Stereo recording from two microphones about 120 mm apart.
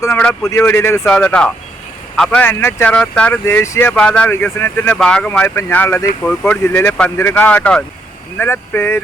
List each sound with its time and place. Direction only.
0.4 s speech: 20° left (ahead or behind)
1.0 s speech: 10° left (ahead or behind)
2.5 s speech: 20° left (ahead or behind)
2.9 s speech: 10° left (ahead or behind)
3.4 s speech: 25° left (ahead or behind)
3.9 s speech: 10° left (ahead or behind)
4.9 s speech: 5° left (ahead or behind)